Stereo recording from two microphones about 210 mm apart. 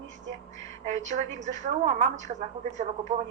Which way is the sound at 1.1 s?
35° right (ahead or behind).